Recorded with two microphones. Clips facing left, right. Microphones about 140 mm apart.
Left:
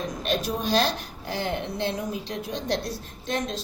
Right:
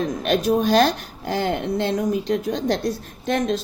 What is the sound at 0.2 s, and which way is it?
A woman's voice, 55° right (ahead or behind).